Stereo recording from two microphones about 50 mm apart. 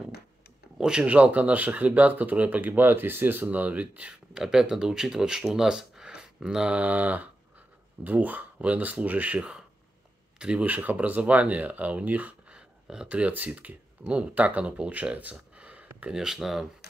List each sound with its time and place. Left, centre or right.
0.7 s a sound: centre
1.0 s speech: right
4.3 s speech: centre
5.5 s a sound: centre
6.7 s speech: right
12.8 s speech: centre
13.1 s speech: right
15.5 s a sound: right
16.1 s speech: centre